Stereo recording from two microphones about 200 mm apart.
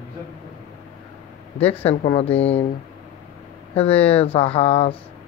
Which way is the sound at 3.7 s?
30° left (ahead or behind).